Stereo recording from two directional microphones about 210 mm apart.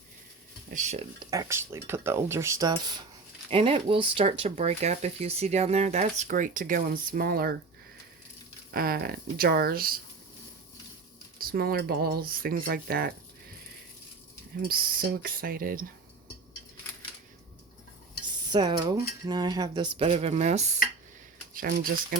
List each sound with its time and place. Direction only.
0.7 s speech: 35° right (ahead or behind)
1.3 s speech: 15° right (ahead or behind); by 7.5 s 45° right (ahead or behind)
8.7 s speech: 45° right (ahead or behind)
11.3 s speech: 45° right (ahead or behind)
14.7 s speech: 45° right (ahead or behind)
18.3 s speech: 20° right (ahead or behind)
21.5 s speech: 45° right (ahead or behind)